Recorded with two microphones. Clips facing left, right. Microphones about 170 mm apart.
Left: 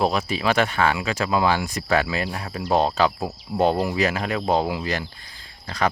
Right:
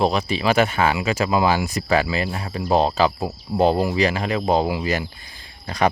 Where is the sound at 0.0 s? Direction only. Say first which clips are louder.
Right 2 dB; centre (ahead or behind).